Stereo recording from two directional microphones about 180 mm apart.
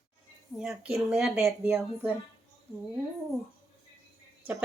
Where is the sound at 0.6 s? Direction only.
5° right (ahead or behind).